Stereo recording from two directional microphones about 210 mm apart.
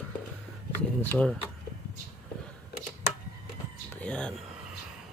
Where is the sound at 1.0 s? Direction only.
5° left (ahead or behind).